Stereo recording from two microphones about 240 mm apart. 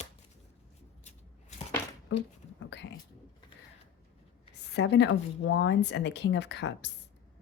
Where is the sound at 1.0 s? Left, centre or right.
Left.